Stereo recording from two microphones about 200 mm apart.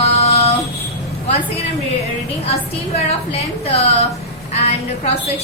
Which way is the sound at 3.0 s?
30° left (ahead or behind).